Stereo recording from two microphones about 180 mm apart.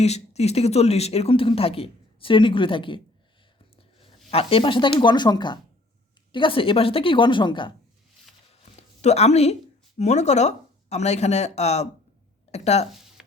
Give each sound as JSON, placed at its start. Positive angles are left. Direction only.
{"t": 0.0, "sound": "a woman's voice", "side_deg": 35}
{"t": 8.7, "sound": "a sound", "side_deg": 35}
{"t": 10.0, "sound": "speech", "side_deg": 40}